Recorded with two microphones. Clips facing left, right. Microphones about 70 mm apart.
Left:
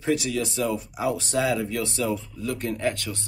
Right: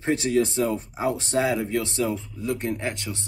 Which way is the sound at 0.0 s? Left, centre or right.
Right.